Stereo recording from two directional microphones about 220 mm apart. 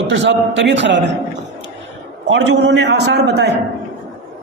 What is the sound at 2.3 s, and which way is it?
A man's voice, 50° right (ahead or behind).